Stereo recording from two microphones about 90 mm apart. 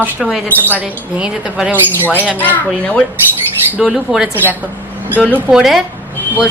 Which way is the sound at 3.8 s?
5° right (ahead or behind).